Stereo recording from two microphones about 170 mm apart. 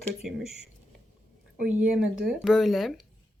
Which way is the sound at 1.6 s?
5° right (ahead or behind).